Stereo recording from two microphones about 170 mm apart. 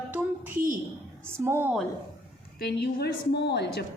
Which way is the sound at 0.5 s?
50° right (ahead or behind).